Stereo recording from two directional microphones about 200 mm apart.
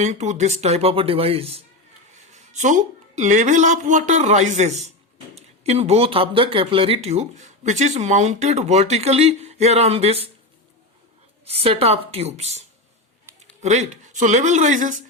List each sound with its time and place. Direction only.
0.0 s speech: 35° right (ahead or behind)
11.4 s speech: 30° right (ahead or behind)